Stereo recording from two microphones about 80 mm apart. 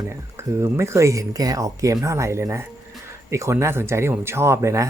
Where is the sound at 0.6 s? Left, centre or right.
Right.